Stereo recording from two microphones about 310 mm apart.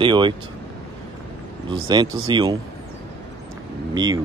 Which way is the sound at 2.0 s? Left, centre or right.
Right.